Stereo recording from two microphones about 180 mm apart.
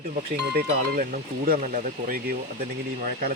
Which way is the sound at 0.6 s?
55° right (ahead or behind).